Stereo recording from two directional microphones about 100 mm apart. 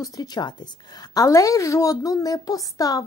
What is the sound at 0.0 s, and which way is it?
A woman's voice, 40° left (ahead or behind).